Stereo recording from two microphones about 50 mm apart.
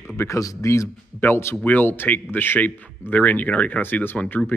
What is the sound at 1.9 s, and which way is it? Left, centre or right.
Speech, left.